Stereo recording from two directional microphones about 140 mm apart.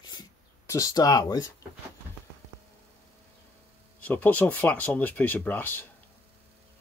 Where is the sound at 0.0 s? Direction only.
30° left (ahead or behind).